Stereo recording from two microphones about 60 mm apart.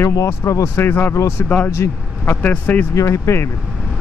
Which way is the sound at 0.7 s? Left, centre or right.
Left.